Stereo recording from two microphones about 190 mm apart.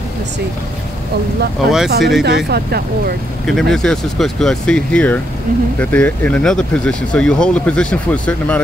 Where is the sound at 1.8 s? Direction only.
60° right (ahead or behind).